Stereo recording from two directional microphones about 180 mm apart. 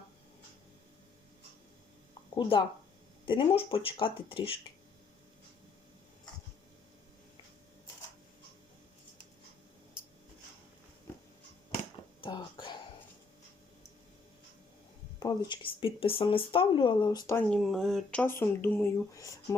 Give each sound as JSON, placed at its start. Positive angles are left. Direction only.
{"t": 2.3, "sound": "speech", "side_deg": 25}
{"t": 12.2, "sound": "whispering", "side_deg": 30}
{"t": 15.4, "sound": "speech", "side_deg": 30}
{"t": 17.5, "sound": "speech", "side_deg": 0}